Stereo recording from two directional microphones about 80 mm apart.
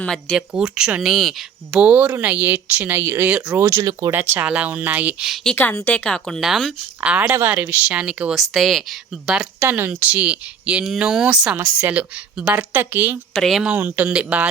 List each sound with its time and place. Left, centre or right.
0.0 s speech: centre
0.5 s speech: centre
1.8 s a woman's voice: centre
3.2 s speech: centre
3.6 s speech: right
4.1 s a woman's voice: right
5.5 s speech: centre
7.0 s speech: centre
7.3 s a woman's voice: right
8.5 s speech: centre
9.6 s a woman's voice: right; by 11.3 s centre
11.5 s a woman's voice: right
13.3 s speech: centre
13.7 s speech: right